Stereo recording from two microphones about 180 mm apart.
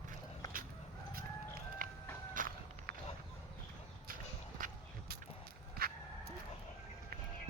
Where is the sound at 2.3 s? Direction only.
50° right (ahead or behind).